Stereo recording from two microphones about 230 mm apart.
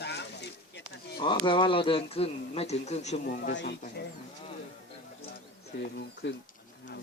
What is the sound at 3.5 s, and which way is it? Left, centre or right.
Speech, left.